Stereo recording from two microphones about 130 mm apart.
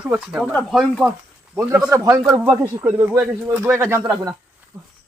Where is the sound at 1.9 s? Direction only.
20° right (ahead or behind).